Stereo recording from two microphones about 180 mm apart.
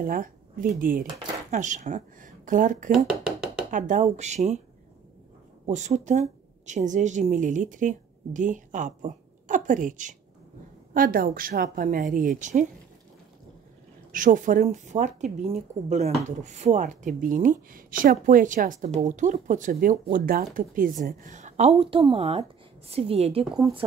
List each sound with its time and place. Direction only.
0.0 s speech: 50° right (ahead or behind)
5.7 s a woman's voice: 40° right (ahead or behind)
14.1 s speech: 45° right (ahead or behind)